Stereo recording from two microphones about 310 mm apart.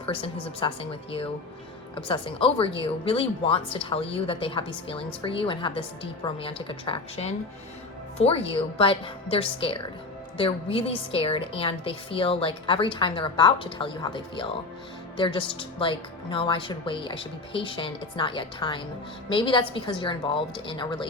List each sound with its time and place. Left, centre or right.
0.0 s a woman's voice: centre